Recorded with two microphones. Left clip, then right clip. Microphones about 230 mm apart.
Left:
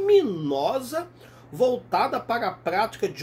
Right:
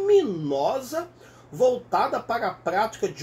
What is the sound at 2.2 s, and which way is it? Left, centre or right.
Speech, left.